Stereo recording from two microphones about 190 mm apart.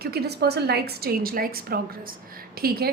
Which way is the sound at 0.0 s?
55° right (ahead or behind).